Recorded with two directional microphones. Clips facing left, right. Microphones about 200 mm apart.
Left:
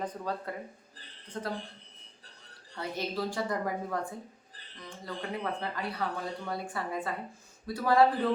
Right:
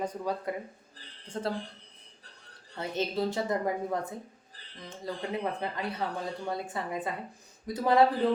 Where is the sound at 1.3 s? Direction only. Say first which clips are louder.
Right 4 dB; 30° right (ahead or behind).